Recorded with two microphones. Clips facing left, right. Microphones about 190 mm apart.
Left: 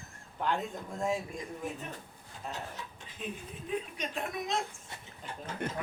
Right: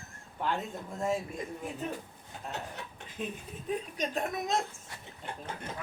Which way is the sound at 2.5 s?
60° right (ahead or behind).